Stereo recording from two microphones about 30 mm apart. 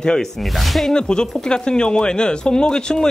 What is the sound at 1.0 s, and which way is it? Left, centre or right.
Speech, left.